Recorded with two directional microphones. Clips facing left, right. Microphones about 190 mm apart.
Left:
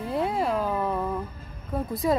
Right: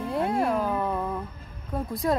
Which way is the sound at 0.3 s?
Centre (ahead or behind).